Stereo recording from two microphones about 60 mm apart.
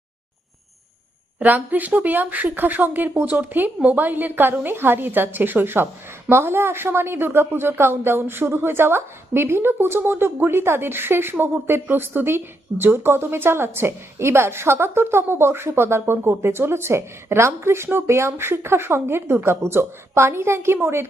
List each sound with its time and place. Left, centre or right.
1.4 s a woman's voice: right